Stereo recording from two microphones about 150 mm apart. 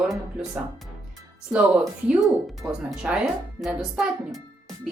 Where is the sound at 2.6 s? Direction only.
15° right (ahead or behind).